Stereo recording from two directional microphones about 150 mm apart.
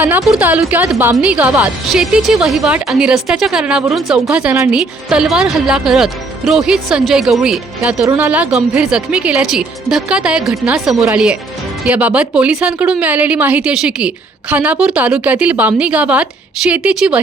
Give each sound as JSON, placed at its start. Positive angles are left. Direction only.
{"t": 0.0, "sound": "a woman's voice", "side_deg": -10}